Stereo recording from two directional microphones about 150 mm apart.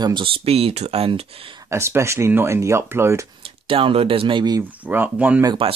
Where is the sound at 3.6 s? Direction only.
35° right (ahead or behind).